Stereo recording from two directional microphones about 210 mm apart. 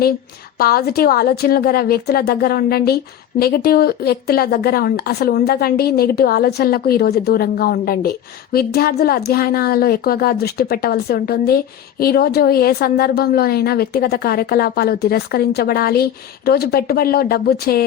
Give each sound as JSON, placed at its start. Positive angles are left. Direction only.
{"t": 0.6, "sound": "a woman's voice", "side_deg": 45}